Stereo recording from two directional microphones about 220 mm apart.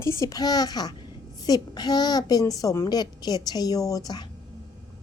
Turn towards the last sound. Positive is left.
turn(degrees=20)  # may be behind; listen again after turning